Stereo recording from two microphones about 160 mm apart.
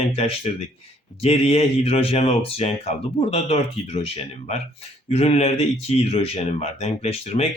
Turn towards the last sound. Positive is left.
turn(degrees=40)  # may be behind; listen again after turning